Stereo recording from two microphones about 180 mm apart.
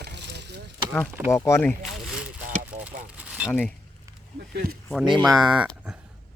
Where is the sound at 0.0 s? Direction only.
70° right (ahead or behind).